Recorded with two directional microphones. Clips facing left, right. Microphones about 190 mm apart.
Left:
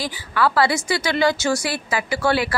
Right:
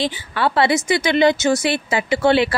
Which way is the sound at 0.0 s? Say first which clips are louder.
Right 1 dB; 25° right (ahead or behind).